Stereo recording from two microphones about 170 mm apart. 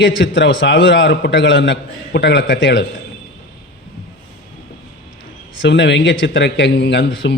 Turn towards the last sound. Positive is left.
turn(degrees=90)